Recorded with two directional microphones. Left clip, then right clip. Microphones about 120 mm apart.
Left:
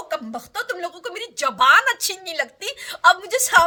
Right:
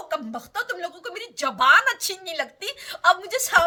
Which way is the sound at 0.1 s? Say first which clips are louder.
Left 1 dB; 40° left (ahead or behind).